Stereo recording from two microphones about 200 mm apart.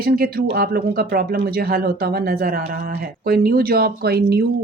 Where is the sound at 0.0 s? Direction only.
50° right (ahead or behind).